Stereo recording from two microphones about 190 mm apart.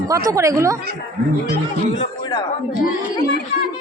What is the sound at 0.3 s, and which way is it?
Speech, 15° right (ahead or behind).